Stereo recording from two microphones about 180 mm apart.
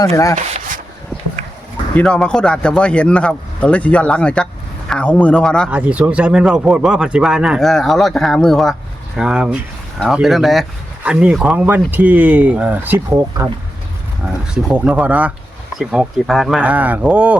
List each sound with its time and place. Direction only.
0.0 s speech: 20° left (ahead or behind)
2.0 s speech: 5° left (ahead or behind)
5.6 s speech: 10° right (ahead or behind)
14.5 s speech: 5° right (ahead or behind)